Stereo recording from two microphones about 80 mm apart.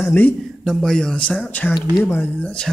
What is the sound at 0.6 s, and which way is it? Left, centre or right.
Speech, centre.